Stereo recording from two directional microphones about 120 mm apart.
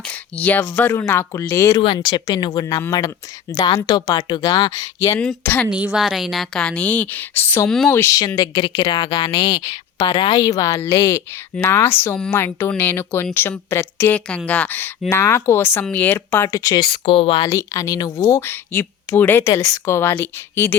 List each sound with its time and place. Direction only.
0.1 s a woman's voice: 15° left (ahead or behind); by 5.2 s 30° left (ahead or behind)
5.7 s a woman's voice: 5° right (ahead or behind); by 8.3 s 25° left (ahead or behind)
8.4 s a woman's voice: 35° left (ahead or behind)
17.5 s speech: 25° left (ahead or behind)